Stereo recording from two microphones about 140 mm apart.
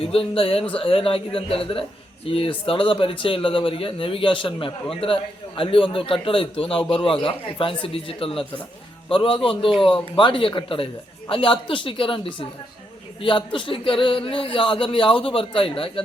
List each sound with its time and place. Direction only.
0.0 s speech: 40° left (ahead or behind)